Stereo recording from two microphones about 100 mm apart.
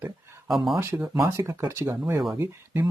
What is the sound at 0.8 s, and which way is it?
Speech, 25° right (ahead or behind).